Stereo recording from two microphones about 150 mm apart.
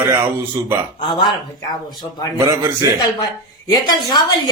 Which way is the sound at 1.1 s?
30° left (ahead or behind).